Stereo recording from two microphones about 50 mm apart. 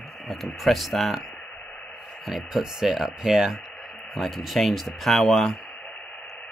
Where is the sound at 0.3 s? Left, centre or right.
Centre.